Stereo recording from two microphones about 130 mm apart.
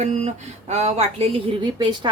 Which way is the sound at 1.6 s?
35° right (ahead or behind).